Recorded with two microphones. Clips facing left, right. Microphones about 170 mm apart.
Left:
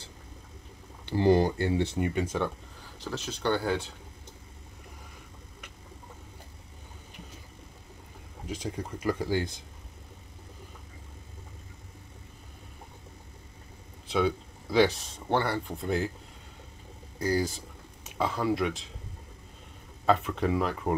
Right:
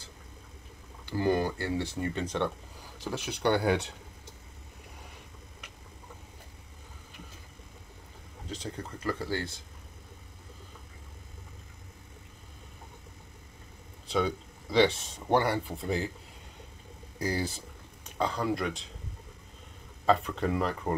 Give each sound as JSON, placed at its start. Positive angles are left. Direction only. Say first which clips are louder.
{"t": 1.0, "sound": "speech", "louder": "left 5 dB", "side_deg": 30}
{"t": 1.6, "sound": "speech", "louder": "left 4 dB", "side_deg": 20}
{"t": 3.0, "sound": "speech", "louder": "right 2 dB", "side_deg": -15}
{"t": 8.5, "sound": "speech", "louder": "left 3 dB", "side_deg": 10}
{"t": 14.0, "sound": "speech", "louder": "left 2 dB", "side_deg": 5}
{"t": 15.2, "sound": "speech", "louder": "right 2 dB", "side_deg": -10}
{"t": 15.7, "sound": "speech", "louder": "left 2 dB", "side_deg": 0}
{"t": 17.4, "sound": "speech", "louder": "left 3 dB", "side_deg": 0}
{"t": 20.1, "sound": "speech", "louder": "left 1 dB", "side_deg": 0}